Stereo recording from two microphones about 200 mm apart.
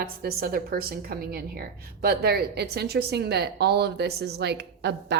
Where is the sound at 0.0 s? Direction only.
50° right (ahead or behind).